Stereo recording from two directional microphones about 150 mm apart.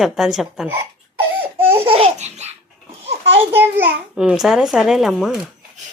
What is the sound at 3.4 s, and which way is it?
Speech, 15° right (ahead or behind).